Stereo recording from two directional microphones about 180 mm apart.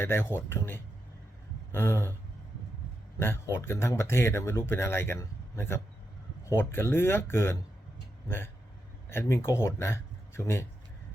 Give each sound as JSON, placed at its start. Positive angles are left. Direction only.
{"t": 0.0, "sound": "speech", "side_deg": 15}
{"t": 3.2, "sound": "speech", "side_deg": 15}
{"t": 9.0, "sound": "speech", "side_deg": 15}